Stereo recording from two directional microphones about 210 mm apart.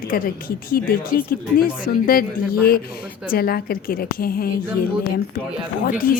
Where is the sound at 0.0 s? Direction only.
40° left (ahead or behind).